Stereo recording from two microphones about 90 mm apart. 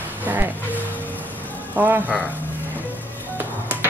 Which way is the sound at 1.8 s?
20° right (ahead or behind).